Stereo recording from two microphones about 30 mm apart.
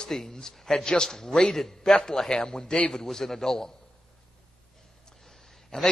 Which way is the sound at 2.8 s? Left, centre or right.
Centre.